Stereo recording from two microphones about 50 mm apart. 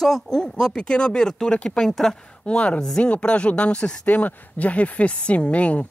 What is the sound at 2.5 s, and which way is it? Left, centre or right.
Speech, left.